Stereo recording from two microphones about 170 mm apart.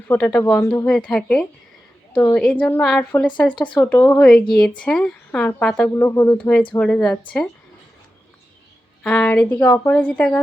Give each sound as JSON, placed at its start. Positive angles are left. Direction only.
{"t": 0.1, "sound": "a woman's voice", "side_deg": 10}
{"t": 0.9, "sound": "a woman's voice", "side_deg": 5}
{"t": 4.8, "sound": "a woman's voice", "side_deg": 5}
{"t": 6.7, "sound": "a woman's voice", "side_deg": 10}
{"t": 9.0, "sound": "a woman's voice", "side_deg": 10}